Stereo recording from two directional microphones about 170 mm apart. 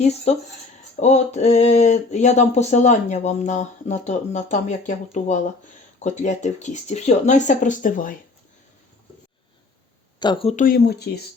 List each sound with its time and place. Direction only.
0.0 s speech: 40° left (ahead or behind)
6.0 s speech: 45° left (ahead or behind)
10.2 s speech: 30° left (ahead or behind)
10.5 s speech: 55° left (ahead or behind); by 11.2 s 75° left (ahead or behind)